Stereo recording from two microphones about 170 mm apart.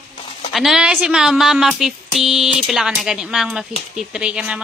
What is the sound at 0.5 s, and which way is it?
Speech, centre (ahead or behind).